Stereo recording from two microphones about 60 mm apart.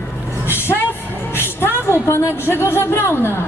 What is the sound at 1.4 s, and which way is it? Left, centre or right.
Music, left.